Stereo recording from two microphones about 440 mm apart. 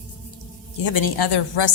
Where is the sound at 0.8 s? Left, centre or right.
Left.